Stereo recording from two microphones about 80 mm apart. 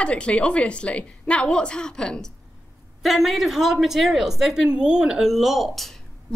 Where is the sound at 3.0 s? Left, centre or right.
Centre.